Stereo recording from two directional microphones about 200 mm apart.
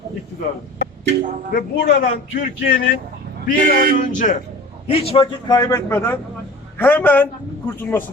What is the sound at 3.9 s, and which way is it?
Speech, 40° left (ahead or behind).